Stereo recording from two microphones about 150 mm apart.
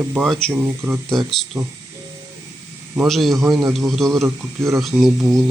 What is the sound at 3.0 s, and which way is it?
A man's voice, centre (ahead or behind).